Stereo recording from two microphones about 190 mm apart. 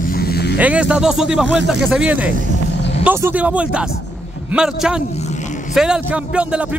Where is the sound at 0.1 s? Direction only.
55° left (ahead or behind).